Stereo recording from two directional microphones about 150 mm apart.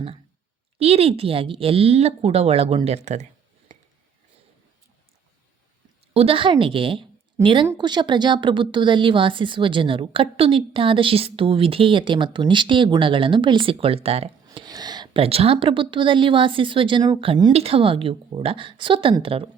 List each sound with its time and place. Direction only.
0.8 s a woman's voice: 40° right (ahead or behind)
6.1 s a woman's voice: 35° right (ahead or behind)
14.4 s a woman's voice: 25° right (ahead or behind)